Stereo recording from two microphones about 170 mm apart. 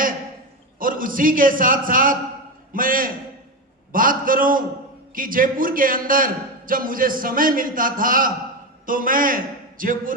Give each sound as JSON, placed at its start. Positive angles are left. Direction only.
{"t": 0.8, "sound": "a man's voice", "side_deg": -55}